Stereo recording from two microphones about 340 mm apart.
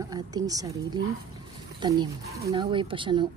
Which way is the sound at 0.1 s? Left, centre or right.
Centre.